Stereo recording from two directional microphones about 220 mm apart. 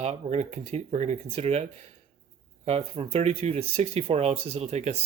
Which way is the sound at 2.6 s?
25° right (ahead or behind).